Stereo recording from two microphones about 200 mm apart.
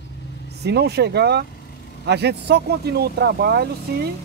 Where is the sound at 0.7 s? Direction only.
55° right (ahead or behind).